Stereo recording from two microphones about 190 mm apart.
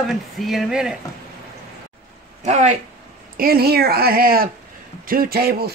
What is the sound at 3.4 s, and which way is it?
Speech, 55° right (ahead or behind).